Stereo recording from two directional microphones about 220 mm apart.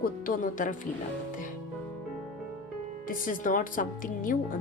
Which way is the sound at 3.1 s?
40° left (ahead or behind).